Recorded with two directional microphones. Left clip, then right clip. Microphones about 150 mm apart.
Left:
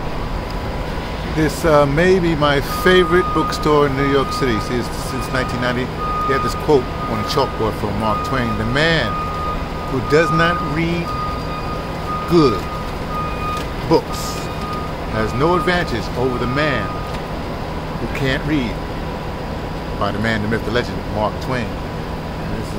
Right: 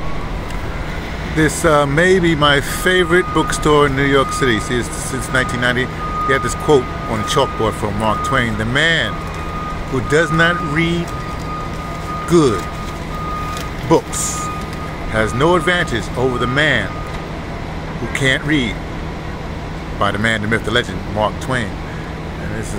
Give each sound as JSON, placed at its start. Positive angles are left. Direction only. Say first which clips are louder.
{"t": 1.4, "sound": "speech", "louder": "right 1 dB", "side_deg": -15}
{"t": 12.3, "sound": "speech", "louder": "right 1 dB", "side_deg": -20}
{"t": 15.1, "sound": "speech", "louder": "right 3 dB", "side_deg": -20}
{"t": 18.2, "sound": "speech", "louder": "right 5 dB", "side_deg": -20}
{"t": 20.0, "sound": "speech", "louder": "right 4 dB", "side_deg": -20}